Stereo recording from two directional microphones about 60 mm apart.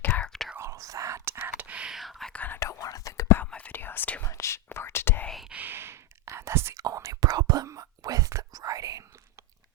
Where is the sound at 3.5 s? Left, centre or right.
Left.